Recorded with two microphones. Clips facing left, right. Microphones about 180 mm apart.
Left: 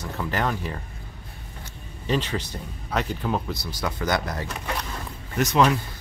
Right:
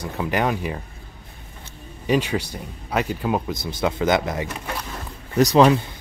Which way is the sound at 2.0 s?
10° right (ahead or behind).